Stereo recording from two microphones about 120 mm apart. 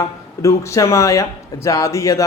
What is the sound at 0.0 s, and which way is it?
Speech, 25° left (ahead or behind).